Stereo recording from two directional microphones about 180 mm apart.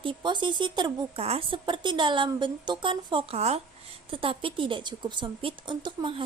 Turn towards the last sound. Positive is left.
turn(degrees=-25)  # may be behind; listen again after turning